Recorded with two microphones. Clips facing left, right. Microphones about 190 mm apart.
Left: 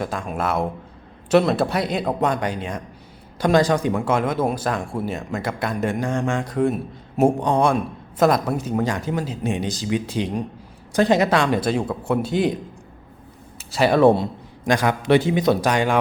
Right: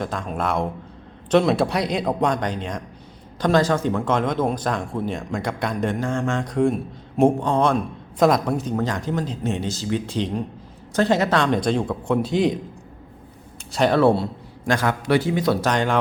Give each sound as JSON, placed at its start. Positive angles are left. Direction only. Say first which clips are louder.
{"t": 0.0, "sound": "speech", "louder": "left 1 dB", "side_deg": 5}
{"t": 8.2, "sound": "speech", "louder": "even", "side_deg": 0}
{"t": 13.7, "sound": "speech", "louder": "left 1 dB", "side_deg": 5}
{"t": 14.0, "sound": "speech", "louder": "left 2 dB", "side_deg": 15}